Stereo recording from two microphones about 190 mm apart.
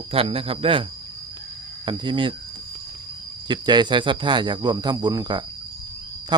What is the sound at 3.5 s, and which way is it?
Speech, 25° right (ahead or behind).